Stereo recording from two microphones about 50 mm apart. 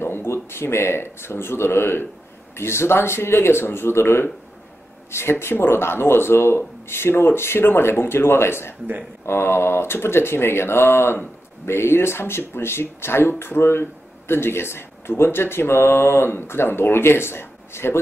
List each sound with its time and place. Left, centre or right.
0.0 s speech: left